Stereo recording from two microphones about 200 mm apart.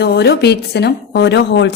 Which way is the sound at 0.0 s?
55° left (ahead or behind).